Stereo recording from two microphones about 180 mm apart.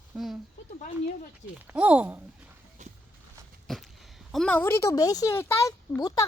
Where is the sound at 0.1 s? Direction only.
5° right (ahead or behind).